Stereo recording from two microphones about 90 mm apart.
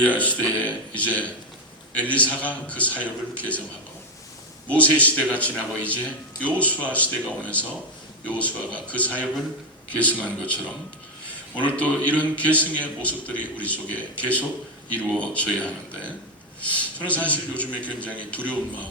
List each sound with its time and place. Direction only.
0.0 s a man's voice: 15° left (ahead or behind)
4.7 s a man's voice: 15° left (ahead or behind)